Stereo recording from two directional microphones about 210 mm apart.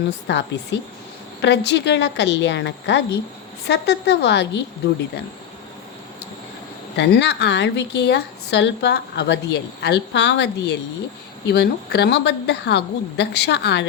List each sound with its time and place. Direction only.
0.3 s a woman's voice: 55° left (ahead or behind)
6.9 s a woman's voice: 55° left (ahead or behind)